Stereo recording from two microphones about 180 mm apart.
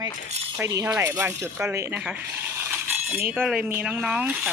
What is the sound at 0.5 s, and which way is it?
Speech, 15° right (ahead or behind).